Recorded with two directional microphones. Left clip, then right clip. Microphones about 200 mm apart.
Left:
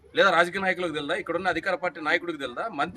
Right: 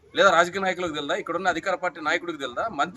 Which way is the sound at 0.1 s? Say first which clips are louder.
Right 2 dB; 5° left (ahead or behind).